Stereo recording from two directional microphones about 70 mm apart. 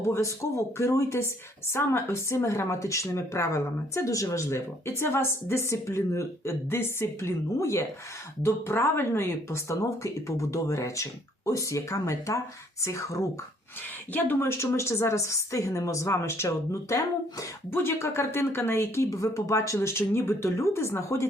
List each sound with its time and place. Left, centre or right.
0.0 s speech: left
14.1 s speech: left
14.6 s speech: left
16.9 s speech: left
17.7 s speech: left